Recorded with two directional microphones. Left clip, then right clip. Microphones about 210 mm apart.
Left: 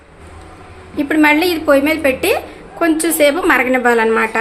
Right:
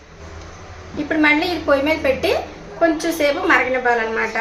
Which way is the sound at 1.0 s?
50° left (ahead or behind).